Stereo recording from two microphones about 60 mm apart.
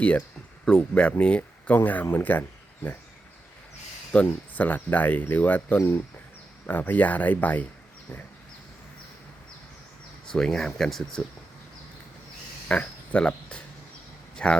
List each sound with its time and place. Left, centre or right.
0.6 s speech: centre
1.6 s speech: left
4.1 s speech: centre
5.7 s speech: left
6.7 s speech: left
10.2 s speech: centre
12.7 s speech: centre